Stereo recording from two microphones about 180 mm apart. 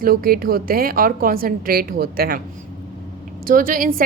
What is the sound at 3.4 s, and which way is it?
Speech, 50° right (ahead or behind).